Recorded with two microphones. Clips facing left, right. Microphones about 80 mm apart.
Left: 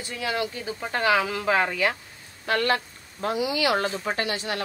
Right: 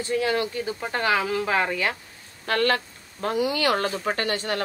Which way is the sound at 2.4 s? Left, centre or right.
Right.